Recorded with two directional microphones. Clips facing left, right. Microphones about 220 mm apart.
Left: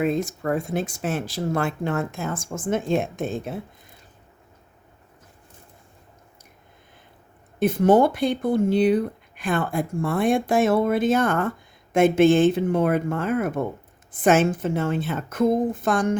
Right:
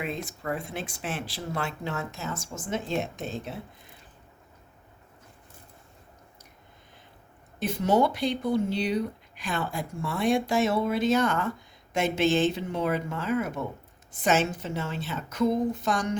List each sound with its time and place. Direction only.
0.0 s speech: 45° left (ahead or behind)
7.6 s speech: 50° left (ahead or behind)